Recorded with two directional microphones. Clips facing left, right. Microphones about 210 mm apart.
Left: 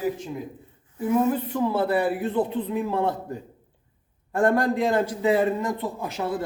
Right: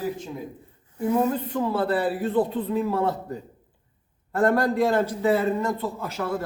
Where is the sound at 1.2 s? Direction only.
10° left (ahead or behind).